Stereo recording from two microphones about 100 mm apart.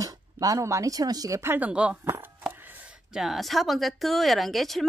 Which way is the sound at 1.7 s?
10° right (ahead or behind).